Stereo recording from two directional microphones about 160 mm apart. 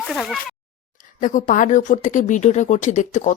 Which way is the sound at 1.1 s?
55° left (ahead or behind).